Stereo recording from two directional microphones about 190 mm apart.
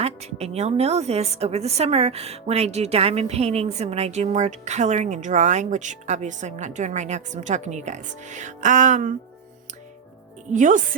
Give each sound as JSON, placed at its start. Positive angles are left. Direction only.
{"t": 0.0, "sound": "a woman's voice", "side_deg": -35}
{"t": 10.5, "sound": "a woman's voice", "side_deg": -40}